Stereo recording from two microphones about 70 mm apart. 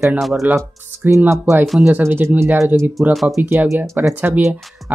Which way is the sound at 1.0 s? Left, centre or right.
Right.